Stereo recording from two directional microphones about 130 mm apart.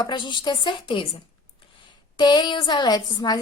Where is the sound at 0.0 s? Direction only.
35° left (ahead or behind).